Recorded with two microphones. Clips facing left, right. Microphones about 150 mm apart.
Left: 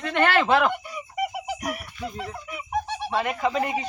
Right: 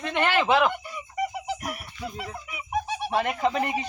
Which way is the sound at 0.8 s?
5° left (ahead or behind).